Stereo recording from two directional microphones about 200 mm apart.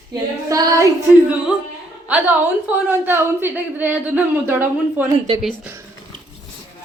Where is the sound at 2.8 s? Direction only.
10° right (ahead or behind).